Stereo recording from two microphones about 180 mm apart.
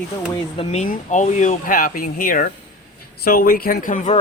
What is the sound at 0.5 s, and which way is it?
Speech, 35° left (ahead or behind).